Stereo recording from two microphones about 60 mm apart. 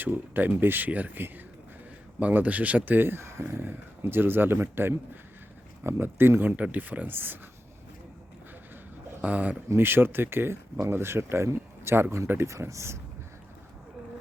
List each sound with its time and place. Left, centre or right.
0.0 s speech: right
6.6 s speech: right
9.2 s speech: right
9.7 s speech: right